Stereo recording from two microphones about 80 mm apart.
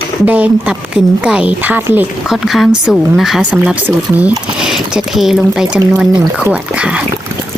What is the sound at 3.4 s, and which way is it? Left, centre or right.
Speech, centre.